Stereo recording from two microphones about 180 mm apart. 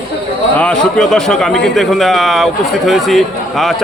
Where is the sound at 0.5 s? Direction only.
5° left (ahead or behind).